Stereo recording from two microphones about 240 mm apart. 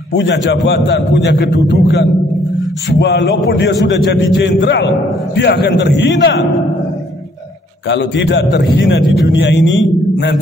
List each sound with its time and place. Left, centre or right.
0.1 s a man's voice: left
7.9 s a man's voice: left